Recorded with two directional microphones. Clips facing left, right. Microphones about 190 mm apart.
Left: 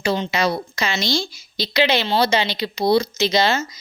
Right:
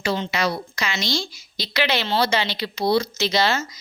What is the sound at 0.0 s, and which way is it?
A woman's voice, 20° left (ahead or behind).